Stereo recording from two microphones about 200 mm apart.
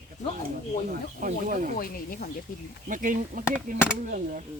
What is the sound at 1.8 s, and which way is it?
Speech, 45° left (ahead or behind).